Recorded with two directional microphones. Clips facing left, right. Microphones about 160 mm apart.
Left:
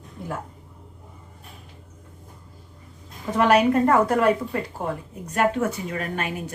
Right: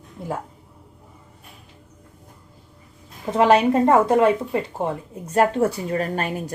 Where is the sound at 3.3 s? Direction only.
25° right (ahead or behind).